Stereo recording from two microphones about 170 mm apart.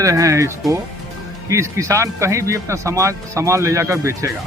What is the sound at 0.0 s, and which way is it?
Speech, 20° right (ahead or behind).